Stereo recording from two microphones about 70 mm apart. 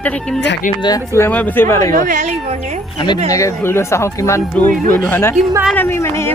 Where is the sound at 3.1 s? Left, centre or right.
Left.